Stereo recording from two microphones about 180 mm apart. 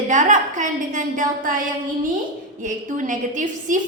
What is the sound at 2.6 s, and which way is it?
A woman's voice, 45° right (ahead or behind).